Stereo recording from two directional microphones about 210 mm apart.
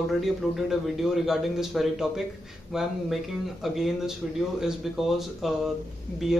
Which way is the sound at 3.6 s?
Centre (ahead or behind).